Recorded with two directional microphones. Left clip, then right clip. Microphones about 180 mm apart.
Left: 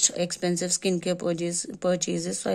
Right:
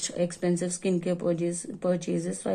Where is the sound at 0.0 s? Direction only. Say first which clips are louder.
Left 3 dB; 30° left (ahead or behind).